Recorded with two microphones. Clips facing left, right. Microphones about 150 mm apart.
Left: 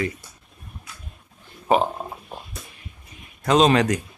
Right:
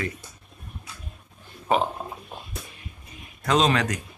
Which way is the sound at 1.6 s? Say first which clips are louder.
Left 3 dB; 15° left (ahead or behind).